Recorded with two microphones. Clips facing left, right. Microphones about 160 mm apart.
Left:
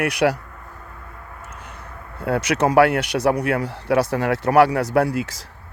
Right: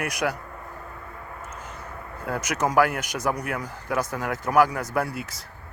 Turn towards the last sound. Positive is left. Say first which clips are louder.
# left 8 dB
turn(degrees=85)